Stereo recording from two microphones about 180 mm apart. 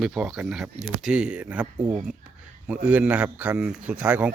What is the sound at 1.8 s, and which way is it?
Speech, 20° right (ahead or behind).